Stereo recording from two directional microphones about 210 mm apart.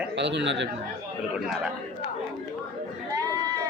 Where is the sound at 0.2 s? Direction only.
55° right (ahead or behind).